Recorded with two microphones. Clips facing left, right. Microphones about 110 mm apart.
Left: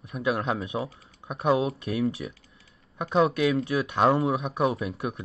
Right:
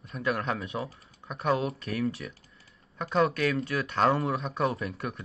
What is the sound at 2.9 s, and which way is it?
Speech, 15° left (ahead or behind).